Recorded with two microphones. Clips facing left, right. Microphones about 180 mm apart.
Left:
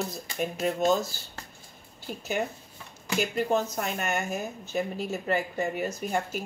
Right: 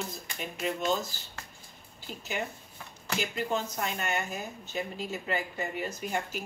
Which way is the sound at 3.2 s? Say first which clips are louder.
Left 6 dB; 45° left (ahead or behind).